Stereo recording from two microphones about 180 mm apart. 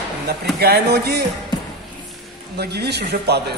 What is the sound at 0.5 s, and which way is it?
Speech, 65° right (ahead or behind).